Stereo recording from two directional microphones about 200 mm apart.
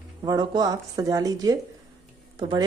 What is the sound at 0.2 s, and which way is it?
A woman's voice, 20° right (ahead or behind).